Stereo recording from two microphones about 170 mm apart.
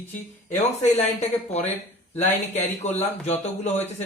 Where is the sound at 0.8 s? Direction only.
40° left (ahead or behind).